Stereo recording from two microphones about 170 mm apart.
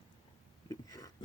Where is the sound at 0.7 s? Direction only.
20° left (ahead or behind).